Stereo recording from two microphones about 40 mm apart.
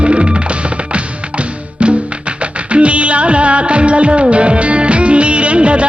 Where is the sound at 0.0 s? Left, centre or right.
Right.